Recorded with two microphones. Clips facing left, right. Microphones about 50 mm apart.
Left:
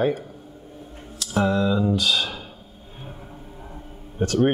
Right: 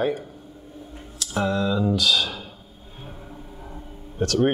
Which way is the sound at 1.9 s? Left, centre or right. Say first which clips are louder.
Right 1 dB; left.